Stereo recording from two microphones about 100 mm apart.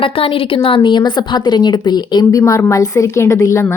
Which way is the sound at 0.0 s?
65° left (ahead or behind).